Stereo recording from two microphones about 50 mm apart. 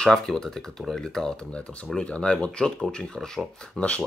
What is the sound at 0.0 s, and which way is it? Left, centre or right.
Speech, centre.